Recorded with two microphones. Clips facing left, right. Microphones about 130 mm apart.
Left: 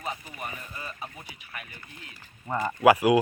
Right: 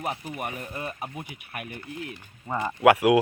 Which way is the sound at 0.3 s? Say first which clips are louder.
Right 5 dB; 55° right (ahead or behind).